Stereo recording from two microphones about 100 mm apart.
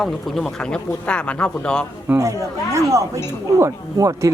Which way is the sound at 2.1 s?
30° right (ahead or behind).